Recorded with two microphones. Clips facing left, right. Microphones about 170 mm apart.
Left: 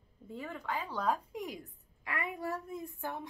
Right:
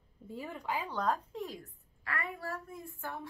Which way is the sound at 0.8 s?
5° left (ahead or behind).